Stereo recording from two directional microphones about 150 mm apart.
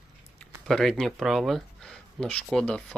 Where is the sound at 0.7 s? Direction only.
5° left (ahead or behind).